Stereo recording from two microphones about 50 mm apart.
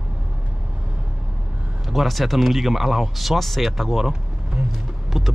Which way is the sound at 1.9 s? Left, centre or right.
Centre.